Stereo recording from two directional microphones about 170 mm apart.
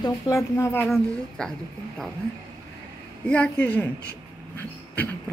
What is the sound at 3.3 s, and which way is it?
A woman's voice, 10° left (ahead or behind).